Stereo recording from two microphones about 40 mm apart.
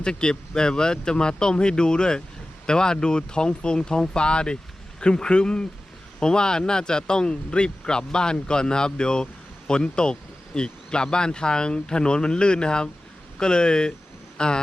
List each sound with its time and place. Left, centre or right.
0.0 s speech: centre